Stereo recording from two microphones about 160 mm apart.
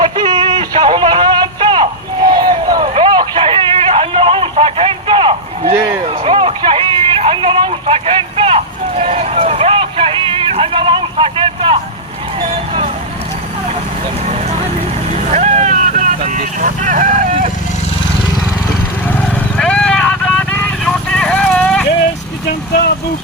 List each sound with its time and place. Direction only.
0.0 s a sound: 30° right (ahead or behind)
6.2 s vehicle: 35° right (ahead or behind)
15.3 s vehicle: 45° right (ahead or behind)
19.5 s vehicle: 5° left (ahead or behind)
22.4 s vehicle: 75° left (ahead or behind)